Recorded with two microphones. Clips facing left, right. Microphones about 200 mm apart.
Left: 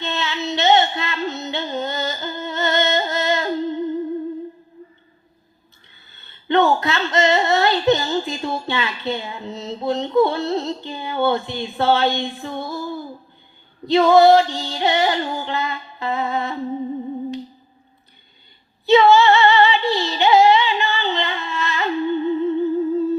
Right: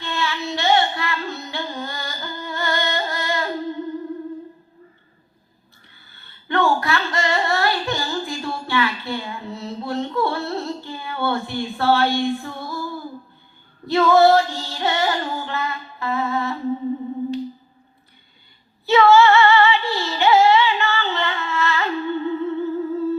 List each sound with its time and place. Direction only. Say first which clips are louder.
0.0 s child singing: left 1 dB; 20° left (ahead or behind)
6.1 s a sound: left 6 dB; 20° left (ahead or behind)
13.8 s female singing: left 2 dB; 20° left (ahead or behind)
18.9 s female singing: left 1 dB; 20° left (ahead or behind)